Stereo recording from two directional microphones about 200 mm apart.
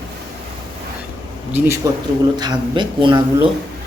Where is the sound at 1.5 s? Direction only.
15° right (ahead or behind).